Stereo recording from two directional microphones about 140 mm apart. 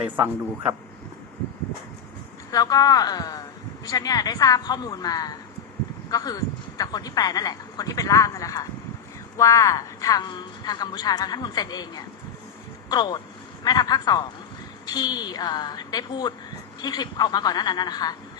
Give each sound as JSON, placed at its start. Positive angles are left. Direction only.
{"t": 2.5, "sound": "a woman's voice", "side_deg": 25}